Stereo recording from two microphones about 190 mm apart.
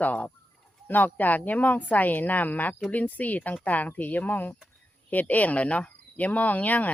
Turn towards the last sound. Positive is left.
turn(degrees=10)  # may be behind; listen again after turning